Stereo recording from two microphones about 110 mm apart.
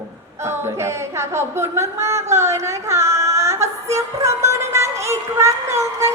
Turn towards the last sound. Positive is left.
turn(degrees=-25)  # may be behind; listen again after turning